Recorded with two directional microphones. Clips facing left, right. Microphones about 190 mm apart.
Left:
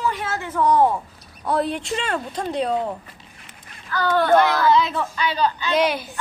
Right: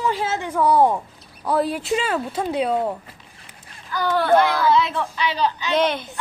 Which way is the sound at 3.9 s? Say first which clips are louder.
Left 1 dB; 10° right (ahead or behind).